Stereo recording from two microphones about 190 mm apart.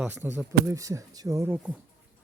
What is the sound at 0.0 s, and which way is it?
Speech, 10° right (ahead or behind).